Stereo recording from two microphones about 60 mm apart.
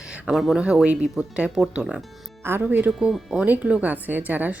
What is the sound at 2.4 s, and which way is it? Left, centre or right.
Speech, right.